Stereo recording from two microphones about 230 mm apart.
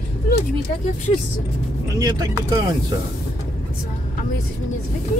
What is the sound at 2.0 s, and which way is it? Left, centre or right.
Speech, centre.